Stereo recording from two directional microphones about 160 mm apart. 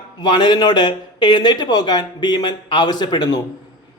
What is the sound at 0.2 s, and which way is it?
A man's voice, 25° left (ahead or behind).